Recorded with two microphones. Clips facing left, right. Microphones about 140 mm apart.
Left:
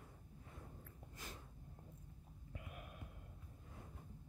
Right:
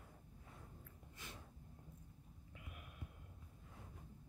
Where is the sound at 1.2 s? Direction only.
40° left (ahead or behind).